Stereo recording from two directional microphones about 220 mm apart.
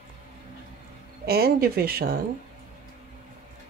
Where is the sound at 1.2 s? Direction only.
45° right (ahead or behind).